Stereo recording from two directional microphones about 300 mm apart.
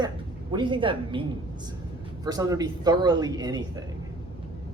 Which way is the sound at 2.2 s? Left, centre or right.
Centre.